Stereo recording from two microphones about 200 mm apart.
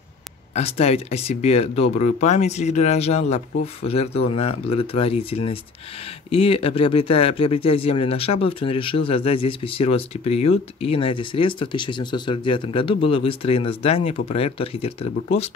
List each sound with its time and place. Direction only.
0.6 s speech: 30° left (ahead or behind)